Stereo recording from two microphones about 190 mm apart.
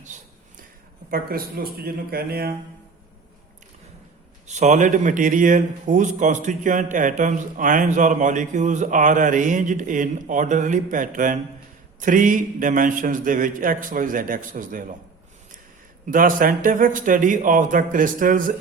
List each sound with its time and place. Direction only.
1.1 s a man's voice: 50° right (ahead or behind)
4.4 s a man's voice: 40° right (ahead or behind)
16.0 s a man's voice: 45° right (ahead or behind)